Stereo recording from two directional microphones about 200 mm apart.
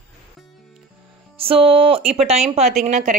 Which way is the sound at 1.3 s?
30° right (ahead or behind).